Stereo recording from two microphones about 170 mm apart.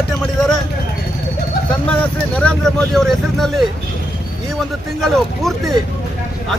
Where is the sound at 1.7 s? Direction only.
10° left (ahead or behind).